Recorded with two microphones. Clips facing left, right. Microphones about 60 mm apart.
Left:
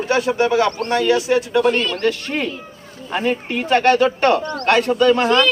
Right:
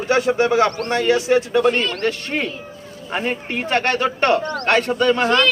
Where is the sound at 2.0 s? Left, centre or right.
Right.